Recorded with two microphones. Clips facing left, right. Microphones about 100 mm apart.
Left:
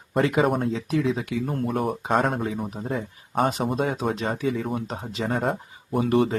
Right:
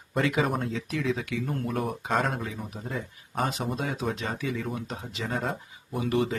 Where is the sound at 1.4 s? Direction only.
45° left (ahead or behind).